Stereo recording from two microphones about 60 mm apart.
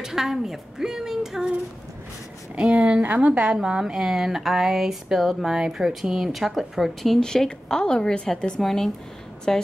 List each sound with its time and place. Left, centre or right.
0.0 s a woman's voice: centre
2.5 s a woman's voice: centre
2.8 s a woman's voice: right; by 9.6 s centre